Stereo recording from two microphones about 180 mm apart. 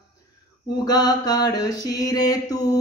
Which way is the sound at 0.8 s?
20° left (ahead or behind).